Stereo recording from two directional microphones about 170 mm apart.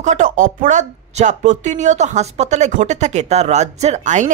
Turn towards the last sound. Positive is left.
turn(degrees=-45)  # may be behind; listen again after turning